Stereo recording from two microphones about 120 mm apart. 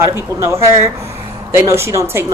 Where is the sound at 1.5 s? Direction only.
20° right (ahead or behind).